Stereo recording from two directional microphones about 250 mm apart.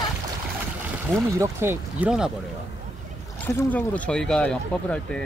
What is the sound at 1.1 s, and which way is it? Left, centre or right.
Speech, centre.